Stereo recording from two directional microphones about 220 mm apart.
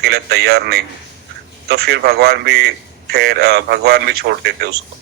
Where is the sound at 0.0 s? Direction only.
45° right (ahead or behind).